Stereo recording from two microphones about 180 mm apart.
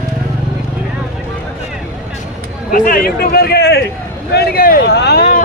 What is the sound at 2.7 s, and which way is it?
Speech, 50° left (ahead or behind).